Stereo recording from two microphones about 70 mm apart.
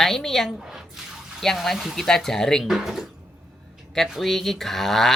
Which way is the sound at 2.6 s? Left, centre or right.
Centre.